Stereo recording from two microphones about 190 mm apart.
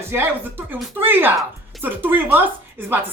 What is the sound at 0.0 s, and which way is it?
Speech, 10° right (ahead or behind).